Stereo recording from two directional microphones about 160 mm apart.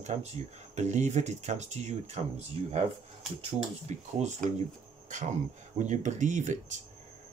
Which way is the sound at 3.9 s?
45° right (ahead or behind).